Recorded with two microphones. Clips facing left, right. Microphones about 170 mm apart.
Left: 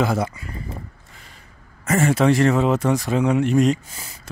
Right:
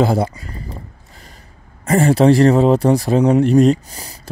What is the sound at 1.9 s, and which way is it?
Speech, 35° right (ahead or behind).